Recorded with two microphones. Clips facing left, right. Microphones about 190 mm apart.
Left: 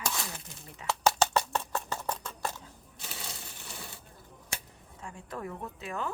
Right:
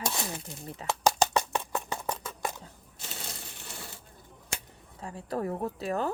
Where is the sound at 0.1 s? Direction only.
20° right (ahead or behind).